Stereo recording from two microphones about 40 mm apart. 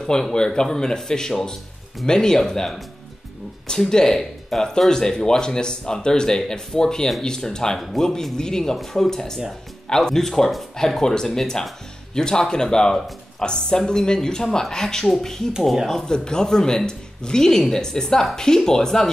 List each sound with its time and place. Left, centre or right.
0.0 s speech: centre